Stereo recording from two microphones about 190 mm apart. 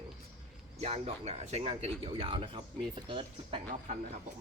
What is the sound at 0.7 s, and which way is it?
Speech, 35° right (ahead or behind).